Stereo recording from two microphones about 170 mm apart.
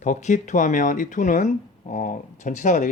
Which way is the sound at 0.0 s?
45° left (ahead or behind).